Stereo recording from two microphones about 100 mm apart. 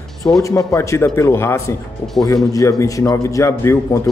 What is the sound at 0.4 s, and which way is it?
A man's voice, 35° left (ahead or behind).